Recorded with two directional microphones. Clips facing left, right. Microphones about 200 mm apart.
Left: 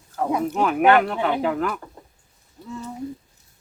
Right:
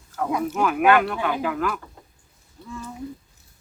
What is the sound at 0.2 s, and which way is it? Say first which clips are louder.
Speech: left 1 dB; 25° left (ahead or behind).